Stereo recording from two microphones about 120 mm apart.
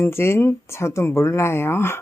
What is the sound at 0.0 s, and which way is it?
Speech, 20° left (ahead or behind).